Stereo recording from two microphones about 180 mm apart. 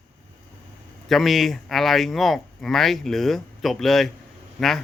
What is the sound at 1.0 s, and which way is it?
Speech, centre (ahead or behind).